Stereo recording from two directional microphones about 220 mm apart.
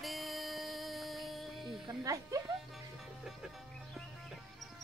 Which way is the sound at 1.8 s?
15° right (ahead or behind).